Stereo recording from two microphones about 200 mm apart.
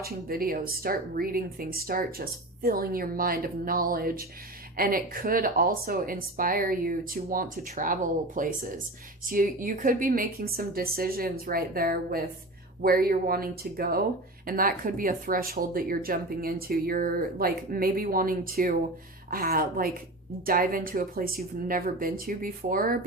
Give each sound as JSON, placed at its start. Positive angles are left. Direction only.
{"t": 0.0, "sound": "speech", "side_deg": -50}